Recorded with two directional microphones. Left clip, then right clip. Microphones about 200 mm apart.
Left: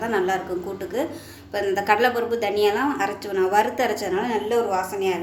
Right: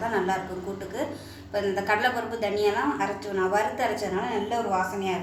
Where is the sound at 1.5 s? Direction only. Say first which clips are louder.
Left 5 dB; 50° left (ahead or behind).